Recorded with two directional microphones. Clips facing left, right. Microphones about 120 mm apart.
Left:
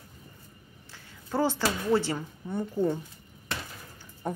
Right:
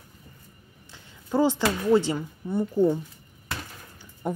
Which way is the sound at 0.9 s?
15° right (ahead or behind).